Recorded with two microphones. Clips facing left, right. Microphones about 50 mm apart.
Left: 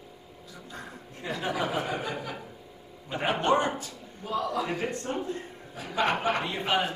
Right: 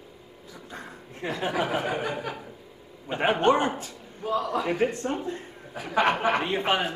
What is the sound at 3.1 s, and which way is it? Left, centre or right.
Speech, right.